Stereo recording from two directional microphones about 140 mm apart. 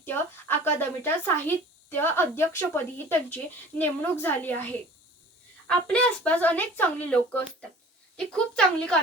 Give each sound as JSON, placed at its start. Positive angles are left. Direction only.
{"t": 0.0, "sound": "speech", "side_deg": 15}
{"t": 5.6, "sound": "speech", "side_deg": 10}